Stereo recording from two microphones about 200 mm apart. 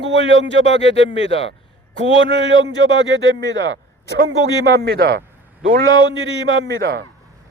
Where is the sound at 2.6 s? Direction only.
70° right (ahead or behind).